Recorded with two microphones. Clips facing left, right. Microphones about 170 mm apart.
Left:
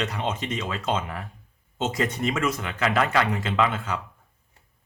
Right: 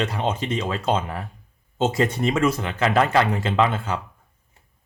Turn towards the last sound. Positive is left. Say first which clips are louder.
# right 3 dB
turn(degrees=-30)  # may be behind; listen again after turning